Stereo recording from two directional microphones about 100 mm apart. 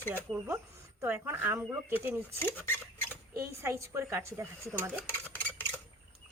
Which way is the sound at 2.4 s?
20° left (ahead or behind).